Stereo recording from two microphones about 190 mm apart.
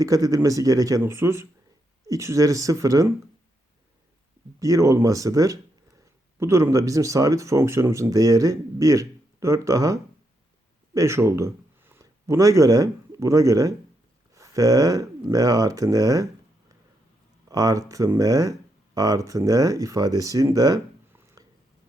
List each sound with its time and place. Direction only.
0.0 s speech: 20° right (ahead or behind)
4.6 s speech: 15° right (ahead or behind)
17.5 s speech: 20° right (ahead or behind)